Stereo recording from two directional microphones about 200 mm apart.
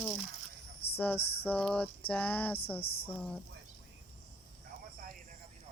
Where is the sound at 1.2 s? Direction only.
50° left (ahead or behind).